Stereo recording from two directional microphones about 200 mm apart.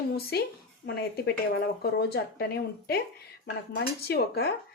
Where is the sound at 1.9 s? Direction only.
50° left (ahead or behind).